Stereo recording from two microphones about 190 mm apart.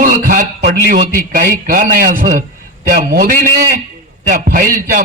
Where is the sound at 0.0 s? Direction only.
45° right (ahead or behind).